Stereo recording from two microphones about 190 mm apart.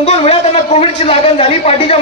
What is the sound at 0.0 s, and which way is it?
A man's voice, 35° left (ahead or behind).